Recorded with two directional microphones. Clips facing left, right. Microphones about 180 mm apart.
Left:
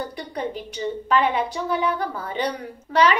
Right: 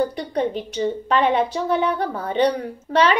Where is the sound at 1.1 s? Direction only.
25° right (ahead or behind).